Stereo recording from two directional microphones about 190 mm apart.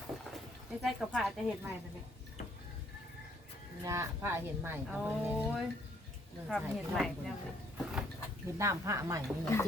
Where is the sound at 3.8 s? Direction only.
15° right (ahead or behind).